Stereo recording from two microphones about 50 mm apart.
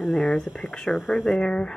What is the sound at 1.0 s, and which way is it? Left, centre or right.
Speech, centre.